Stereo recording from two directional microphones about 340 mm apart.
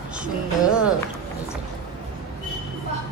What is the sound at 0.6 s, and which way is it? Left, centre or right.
Speech, centre.